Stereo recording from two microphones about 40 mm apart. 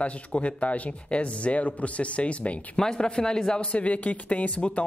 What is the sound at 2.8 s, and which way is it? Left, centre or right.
Speech, centre.